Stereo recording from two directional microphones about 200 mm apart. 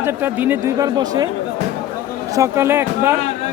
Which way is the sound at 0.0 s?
10° right (ahead or behind).